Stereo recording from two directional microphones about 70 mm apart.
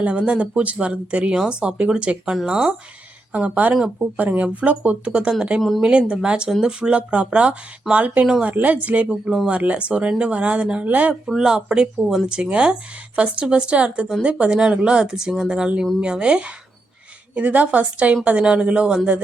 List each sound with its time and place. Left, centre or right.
0.0 s a woman's voice: centre
3.8 s speech: centre
4.2 s speech: right
11.3 s a woman's voice: centre